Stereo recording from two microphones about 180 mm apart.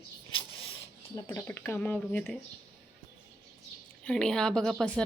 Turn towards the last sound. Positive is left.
turn(degrees=5)  # may be behind; listen again after turning